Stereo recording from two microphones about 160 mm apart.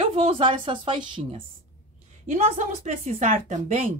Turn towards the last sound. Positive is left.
turn(degrees=-45)  # may be behind; listen again after turning